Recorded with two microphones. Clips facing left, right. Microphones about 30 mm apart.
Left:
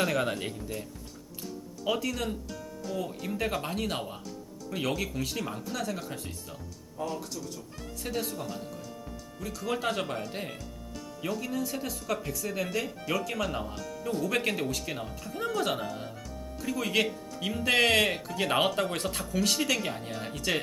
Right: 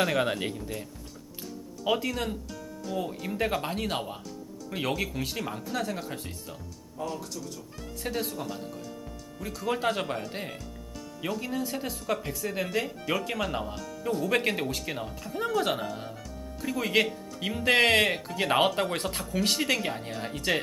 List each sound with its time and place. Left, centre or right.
0.0 s speech: centre
11.3 s speech: centre
19.8 s speech: centre
20.3 s speech: centre